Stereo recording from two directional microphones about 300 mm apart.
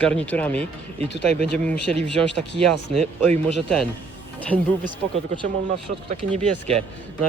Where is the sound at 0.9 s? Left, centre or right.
Right.